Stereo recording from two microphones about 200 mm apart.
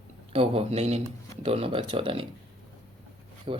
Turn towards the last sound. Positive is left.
turn(degrees=-25)  # may be behind; listen again after turning